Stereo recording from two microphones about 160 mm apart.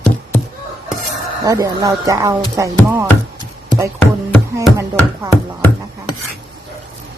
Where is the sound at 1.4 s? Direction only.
20° right (ahead or behind).